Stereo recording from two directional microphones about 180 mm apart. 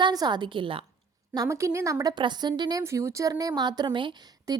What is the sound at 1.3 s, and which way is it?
A woman's voice, 20° right (ahead or behind).